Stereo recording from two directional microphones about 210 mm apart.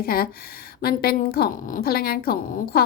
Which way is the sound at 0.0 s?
45° left (ahead or behind).